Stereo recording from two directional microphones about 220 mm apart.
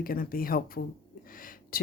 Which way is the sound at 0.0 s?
40° left (ahead or behind).